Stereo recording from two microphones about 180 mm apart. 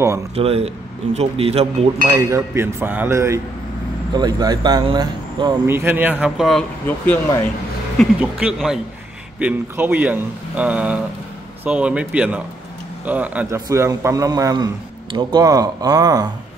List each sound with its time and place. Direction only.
0.4 s speech: 35° right (ahead or behind)
2.0 s a man's voice: 20° right (ahead or behind)
5.7 s a man's voice: 10° right (ahead or behind)
8.0 s a man's voice: 5° right (ahead or behind)